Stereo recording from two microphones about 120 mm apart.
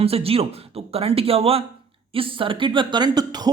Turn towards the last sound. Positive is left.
turn(degrees=-35)  # may be behind; listen again after turning